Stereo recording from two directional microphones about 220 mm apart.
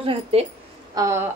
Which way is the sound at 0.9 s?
15° right (ahead or behind).